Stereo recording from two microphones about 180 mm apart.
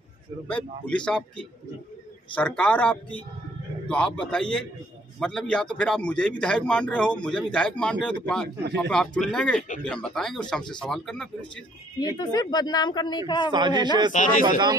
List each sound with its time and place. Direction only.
0.5 s a man's voice: 5° left (ahead or behind)
2.3 s a man's voice: 10° left (ahead or behind)
12.0 s speech: 20° left (ahead or behind)
13.5 s a man's voice: 25° right (ahead or behind)
14.1 s speech: 45° left (ahead or behind)